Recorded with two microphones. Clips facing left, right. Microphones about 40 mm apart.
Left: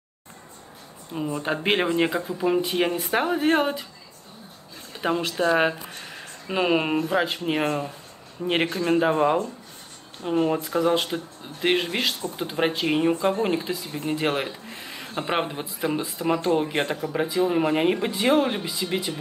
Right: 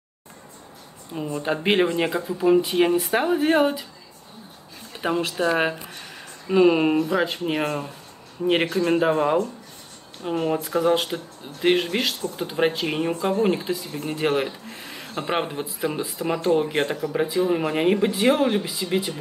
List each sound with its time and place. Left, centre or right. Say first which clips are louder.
1.1 s speech: right 1 dB; centre
5.0 s speech: even; centre
5.9 s a sound: left 1 dB; centre
7.0 s speech: right 1 dB; centre
8.7 s speech: right 1 dB; centre